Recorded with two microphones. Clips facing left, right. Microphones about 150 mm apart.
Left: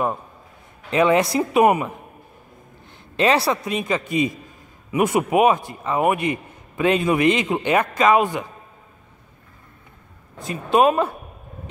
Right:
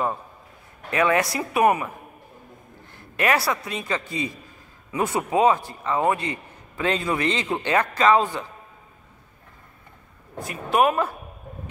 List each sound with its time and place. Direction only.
0.8 s speech: 20° left (ahead or behind)
2.9 s a man's voice: 25° left (ahead or behind)
10.4 s speech: 25° left (ahead or behind)